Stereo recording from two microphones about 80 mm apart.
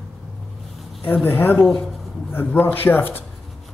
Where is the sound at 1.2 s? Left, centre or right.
Left.